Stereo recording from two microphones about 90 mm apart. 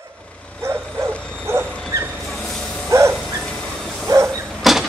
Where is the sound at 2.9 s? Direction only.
30° right (ahead or behind).